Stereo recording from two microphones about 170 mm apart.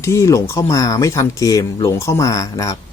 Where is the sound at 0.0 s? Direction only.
15° left (ahead or behind).